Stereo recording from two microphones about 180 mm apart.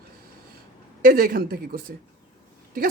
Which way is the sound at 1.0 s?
50° right (ahead or behind).